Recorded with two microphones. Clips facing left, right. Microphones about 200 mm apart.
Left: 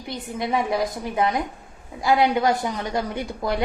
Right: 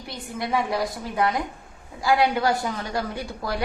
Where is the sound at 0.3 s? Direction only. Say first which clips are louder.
Left 2 dB; 20° left (ahead or behind).